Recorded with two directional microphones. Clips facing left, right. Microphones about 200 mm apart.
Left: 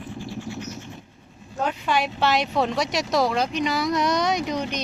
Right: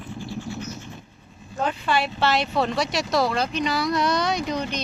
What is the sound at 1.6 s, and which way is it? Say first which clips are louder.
Speech: even; 10° left (ahead or behind).